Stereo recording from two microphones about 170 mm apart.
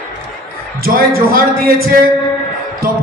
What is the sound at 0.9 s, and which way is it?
A man's voice, 60° right (ahead or behind).